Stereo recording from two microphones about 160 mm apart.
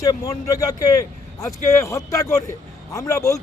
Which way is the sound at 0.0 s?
20° left (ahead or behind).